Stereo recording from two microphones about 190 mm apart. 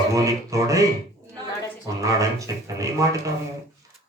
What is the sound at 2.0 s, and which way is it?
A man's voice, 15° right (ahead or behind).